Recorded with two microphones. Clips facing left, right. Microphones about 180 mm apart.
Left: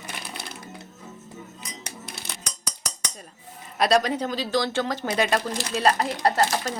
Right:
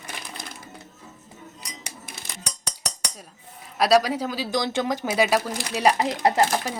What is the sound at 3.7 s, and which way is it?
A woman's voice, 5° right (ahead or behind).